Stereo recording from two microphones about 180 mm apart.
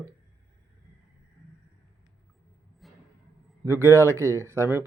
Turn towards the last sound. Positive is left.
turn(degrees=-15)  # may be behind; listen again after turning